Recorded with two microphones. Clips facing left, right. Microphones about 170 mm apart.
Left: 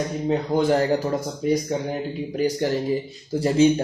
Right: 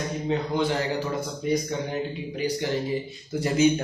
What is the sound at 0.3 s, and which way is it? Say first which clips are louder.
Speech: left 5 dB; 45° left (ahead or behind).